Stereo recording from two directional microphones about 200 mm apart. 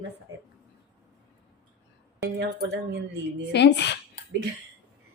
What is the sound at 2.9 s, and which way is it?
Speech, 60° right (ahead or behind).